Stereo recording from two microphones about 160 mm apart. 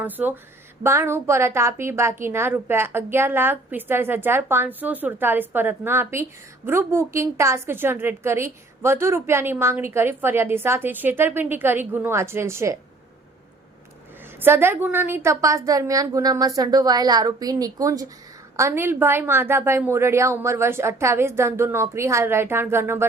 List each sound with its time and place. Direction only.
0.0 s a woman's voice: 10° right (ahead or behind)
14.4 s a woman's voice: 15° right (ahead or behind)